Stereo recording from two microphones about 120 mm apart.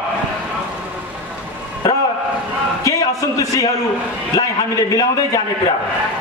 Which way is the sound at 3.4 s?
30° left (ahead or behind).